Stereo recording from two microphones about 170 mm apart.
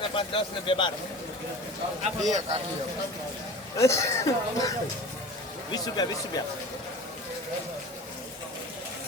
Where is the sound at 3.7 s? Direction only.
15° left (ahead or behind).